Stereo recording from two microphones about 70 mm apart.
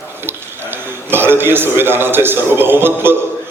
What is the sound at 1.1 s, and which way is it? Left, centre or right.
A man's voice, right.